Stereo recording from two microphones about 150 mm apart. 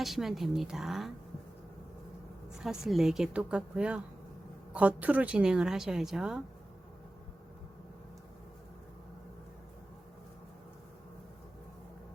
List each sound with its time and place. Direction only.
0.0 s speech: centre (ahead or behind)
2.6 s speech: centre (ahead or behind)